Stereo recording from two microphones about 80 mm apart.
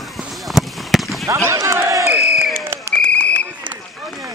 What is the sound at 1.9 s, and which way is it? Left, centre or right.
Crowd, right.